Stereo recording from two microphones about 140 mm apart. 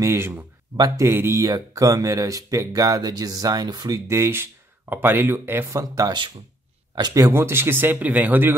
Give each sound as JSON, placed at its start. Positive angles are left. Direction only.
{"t": 0.0, "sound": "speech", "side_deg": -20}